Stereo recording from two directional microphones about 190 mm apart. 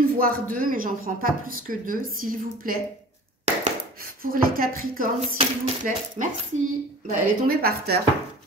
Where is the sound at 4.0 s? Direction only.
50° right (ahead or behind).